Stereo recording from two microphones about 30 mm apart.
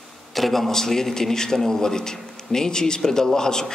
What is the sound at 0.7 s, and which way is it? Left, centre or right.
A man's voice, centre.